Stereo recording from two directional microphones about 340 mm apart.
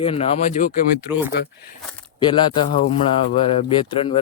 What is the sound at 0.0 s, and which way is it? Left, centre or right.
Speech, centre.